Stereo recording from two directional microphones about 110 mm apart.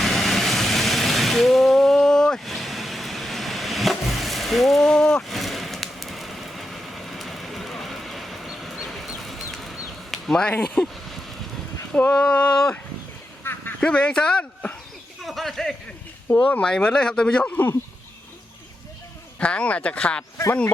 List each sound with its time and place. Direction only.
0.0 s vehicle: centre (ahead or behind)
10.8 s speech: 10° left (ahead or behind)
13.4 s a sound: 20° left (ahead or behind)
13.8 s speech: 10° left (ahead or behind)
15.2 s a sound: centre (ahead or behind)
16.5 s speech: 10° left (ahead or behind)
19.4 s speech: 10° left (ahead or behind)